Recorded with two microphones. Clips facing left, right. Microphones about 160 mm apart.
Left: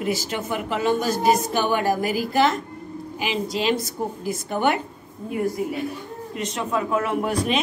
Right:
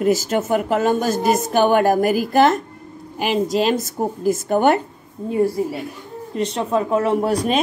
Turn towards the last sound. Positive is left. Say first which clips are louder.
# right 4 dB
turn(degrees=-40)  # may be behind; listen again after turning